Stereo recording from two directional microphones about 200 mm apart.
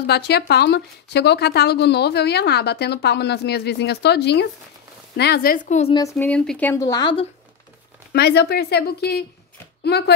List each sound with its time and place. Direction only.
0.0 s speech: 55° left (ahead or behind); by 5.9 s 35° left (ahead or behind)
5.9 s speech: 15° left (ahead or behind)
8.1 s speech: 55° left (ahead or behind)